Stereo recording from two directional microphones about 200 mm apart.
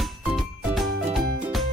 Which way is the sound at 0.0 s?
Centre (ahead or behind).